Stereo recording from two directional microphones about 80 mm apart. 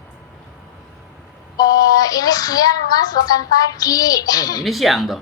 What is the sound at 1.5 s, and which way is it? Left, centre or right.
A child's voice, left.